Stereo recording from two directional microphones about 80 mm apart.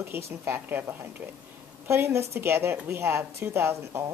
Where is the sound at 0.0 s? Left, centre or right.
Right.